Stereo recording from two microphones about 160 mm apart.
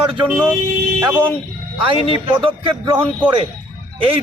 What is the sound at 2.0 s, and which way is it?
Speech, 35° right (ahead or behind).